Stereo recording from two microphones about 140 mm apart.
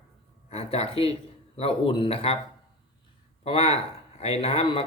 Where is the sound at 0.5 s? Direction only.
50° left (ahead or behind).